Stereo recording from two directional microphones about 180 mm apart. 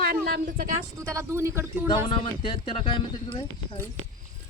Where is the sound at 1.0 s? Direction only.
15° right (ahead or behind).